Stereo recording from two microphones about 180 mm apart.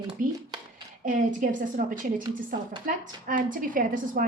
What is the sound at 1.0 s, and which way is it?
A woman's voice, 45° right (ahead or behind).